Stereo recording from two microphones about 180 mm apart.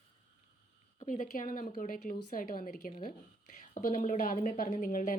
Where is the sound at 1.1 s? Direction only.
45° left (ahead or behind).